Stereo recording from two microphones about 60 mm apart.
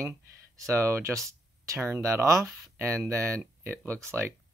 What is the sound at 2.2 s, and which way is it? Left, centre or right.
Speech, right.